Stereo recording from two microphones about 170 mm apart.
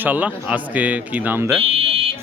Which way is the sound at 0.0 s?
10° right (ahead or behind).